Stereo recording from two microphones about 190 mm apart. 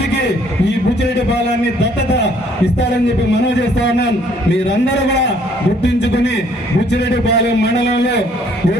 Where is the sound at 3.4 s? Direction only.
65° left (ahead or behind).